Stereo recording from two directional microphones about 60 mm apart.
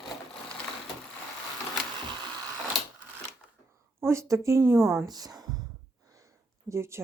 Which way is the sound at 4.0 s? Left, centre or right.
Right.